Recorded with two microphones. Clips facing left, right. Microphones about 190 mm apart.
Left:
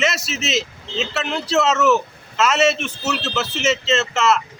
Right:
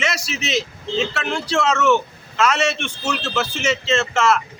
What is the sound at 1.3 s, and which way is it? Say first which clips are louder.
Speech: left 2 dB; 5° left (ahead or behind).